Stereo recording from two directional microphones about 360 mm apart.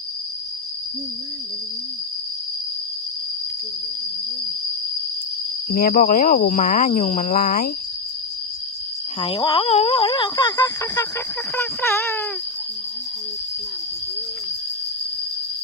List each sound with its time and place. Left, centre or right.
5.7 s speech: left
9.2 s speech: centre